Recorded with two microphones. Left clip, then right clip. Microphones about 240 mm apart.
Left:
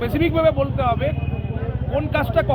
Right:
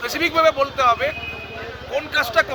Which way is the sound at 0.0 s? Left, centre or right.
Centre.